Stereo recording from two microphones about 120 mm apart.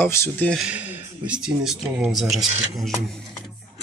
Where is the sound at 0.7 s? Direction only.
15° right (ahead or behind).